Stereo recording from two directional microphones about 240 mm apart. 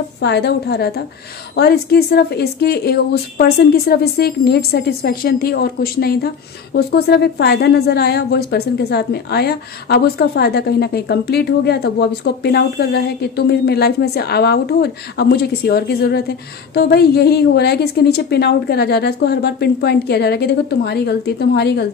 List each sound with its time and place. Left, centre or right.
0.2 s a woman's voice: left